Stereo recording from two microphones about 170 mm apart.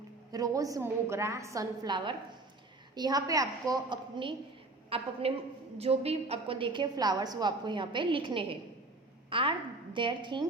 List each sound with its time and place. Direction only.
0.3 s a woman's voice: 20° right (ahead or behind)